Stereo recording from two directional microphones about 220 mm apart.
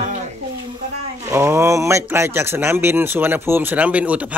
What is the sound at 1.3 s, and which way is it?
Speech, 10° right (ahead or behind).